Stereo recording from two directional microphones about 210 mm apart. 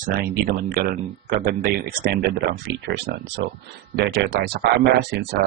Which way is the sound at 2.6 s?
50° right (ahead or behind).